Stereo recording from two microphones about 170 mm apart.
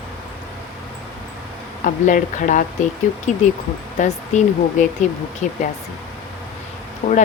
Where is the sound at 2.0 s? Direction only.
50° left (ahead or behind).